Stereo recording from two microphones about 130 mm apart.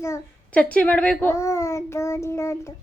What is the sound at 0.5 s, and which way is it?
Speech, 10° left (ahead or behind).